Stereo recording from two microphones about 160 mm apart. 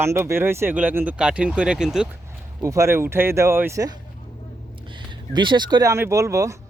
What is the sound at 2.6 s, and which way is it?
Speech, 20° right (ahead or behind).